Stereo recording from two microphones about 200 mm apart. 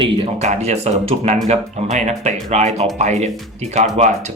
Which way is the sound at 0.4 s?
35° right (ahead or behind).